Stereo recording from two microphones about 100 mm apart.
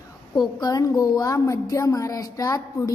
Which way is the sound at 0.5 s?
40° left (ahead or behind).